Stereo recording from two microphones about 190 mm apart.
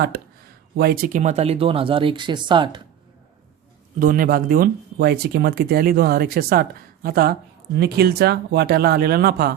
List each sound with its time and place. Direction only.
0.8 s speech: 50° right (ahead or behind); by 2.8 s 25° right (ahead or behind)
4.0 s speech: 50° right (ahead or behind)